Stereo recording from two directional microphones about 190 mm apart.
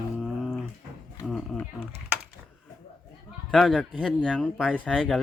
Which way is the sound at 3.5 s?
Centre (ahead or behind).